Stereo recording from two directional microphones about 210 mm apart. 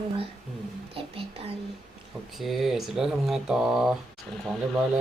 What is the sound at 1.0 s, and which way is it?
Speech, 25° right (ahead or behind).